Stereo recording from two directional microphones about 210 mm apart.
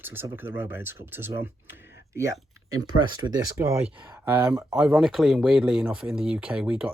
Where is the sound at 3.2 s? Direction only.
15° right (ahead or behind).